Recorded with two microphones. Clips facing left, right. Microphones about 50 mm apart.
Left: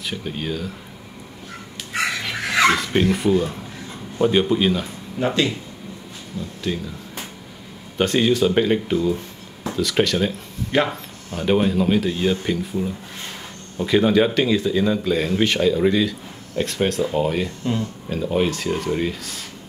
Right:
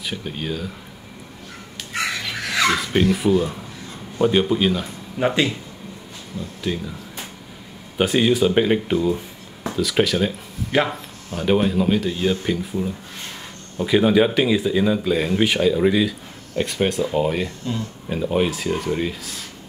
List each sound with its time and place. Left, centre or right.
0.0 s speech: centre
1.9 s chicken: centre
2.4 s dog: left
2.8 s speech: centre
5.2 s speech: centre
8.0 s speech: centre